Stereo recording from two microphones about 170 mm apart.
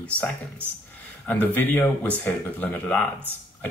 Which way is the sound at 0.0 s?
10° left (ahead or behind).